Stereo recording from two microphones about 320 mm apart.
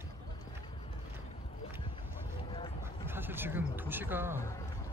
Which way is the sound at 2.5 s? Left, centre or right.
Centre.